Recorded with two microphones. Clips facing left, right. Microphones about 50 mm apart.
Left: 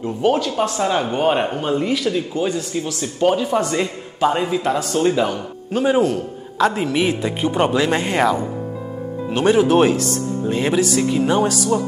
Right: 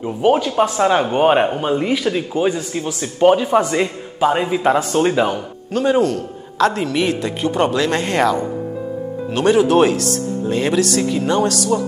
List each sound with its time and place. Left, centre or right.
0.0 s speech: centre
5.7 s a man's voice: centre